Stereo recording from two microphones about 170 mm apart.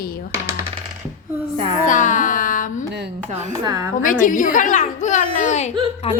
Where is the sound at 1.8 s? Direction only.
50° left (ahead or behind).